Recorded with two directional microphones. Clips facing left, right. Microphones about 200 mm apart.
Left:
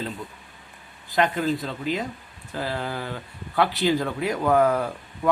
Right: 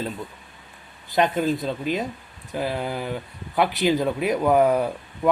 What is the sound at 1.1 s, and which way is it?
Speech, 20° right (ahead or behind).